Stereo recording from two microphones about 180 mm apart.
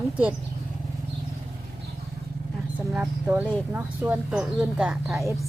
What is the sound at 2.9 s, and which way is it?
Speech, 5° right (ahead or behind).